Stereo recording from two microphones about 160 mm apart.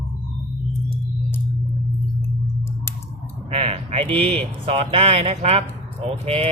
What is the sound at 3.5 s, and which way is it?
Speech, 40° right (ahead or behind).